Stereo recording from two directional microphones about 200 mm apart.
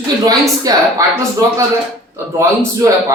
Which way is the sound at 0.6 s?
15° right (ahead or behind).